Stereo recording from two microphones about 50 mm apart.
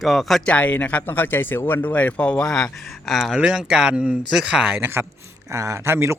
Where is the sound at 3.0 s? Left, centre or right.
Centre.